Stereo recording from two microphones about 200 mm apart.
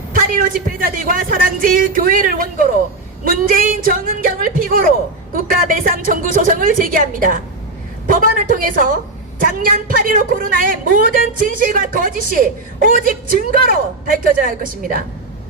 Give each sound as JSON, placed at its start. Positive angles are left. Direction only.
{"t": 0.1, "sound": "a woman's voice", "side_deg": -45}